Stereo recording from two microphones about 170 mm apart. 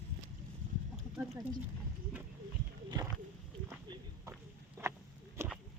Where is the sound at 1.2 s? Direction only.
25° right (ahead or behind).